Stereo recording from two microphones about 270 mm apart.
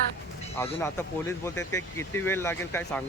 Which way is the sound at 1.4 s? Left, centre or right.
Centre.